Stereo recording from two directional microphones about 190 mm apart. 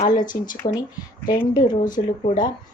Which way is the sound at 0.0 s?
45° left (ahead or behind).